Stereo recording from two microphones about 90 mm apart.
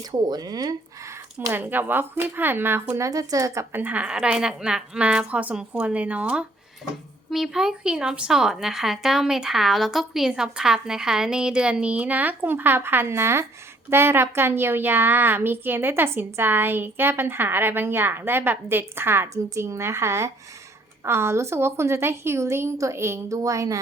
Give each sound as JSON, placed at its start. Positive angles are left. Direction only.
{"t": 0.1, "sound": "speech", "side_deg": -50}
{"t": 1.4, "sound": "a woman's voice", "side_deg": -25}
{"t": 3.8, "sound": "a woman's voice", "side_deg": -15}
{"t": 7.3, "sound": "a woman's voice", "side_deg": -5}